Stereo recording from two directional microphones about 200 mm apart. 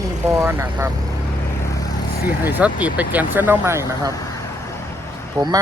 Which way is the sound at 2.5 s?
10° right (ahead or behind).